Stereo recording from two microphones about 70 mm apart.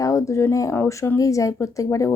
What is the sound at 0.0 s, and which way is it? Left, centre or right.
Speech, left.